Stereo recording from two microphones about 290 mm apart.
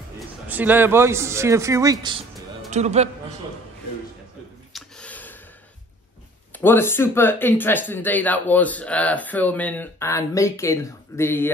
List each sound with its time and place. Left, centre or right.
0.5 s a man's voice: centre; by 3.1 s right
4.7 s a sound: centre
6.5 s speech: centre